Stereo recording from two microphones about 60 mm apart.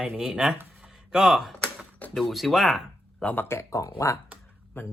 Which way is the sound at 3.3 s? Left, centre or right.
Left.